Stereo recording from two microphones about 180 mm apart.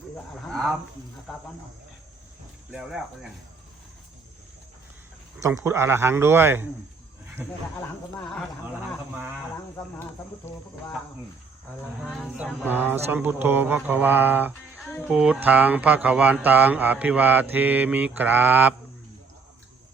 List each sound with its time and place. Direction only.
0.4 s a sound: centre (ahead or behind)
2.7 s speech: 5° right (ahead or behind)
5.4 s speech: 15° right (ahead or behind)
12.0 s speech: centre (ahead or behind)
12.6 s speech: 10° right (ahead or behind)
14.8 s music: 10° left (ahead or behind)
15.1 s speech: 5° right (ahead or behind)